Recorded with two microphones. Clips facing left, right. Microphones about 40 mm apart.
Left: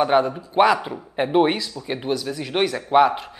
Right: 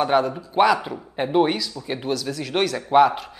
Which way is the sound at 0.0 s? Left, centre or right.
Centre.